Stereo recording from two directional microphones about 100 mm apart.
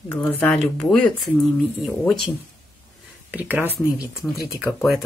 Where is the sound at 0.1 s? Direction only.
15° left (ahead or behind).